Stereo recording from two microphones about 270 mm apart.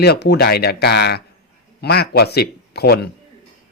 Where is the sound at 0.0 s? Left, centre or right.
Left.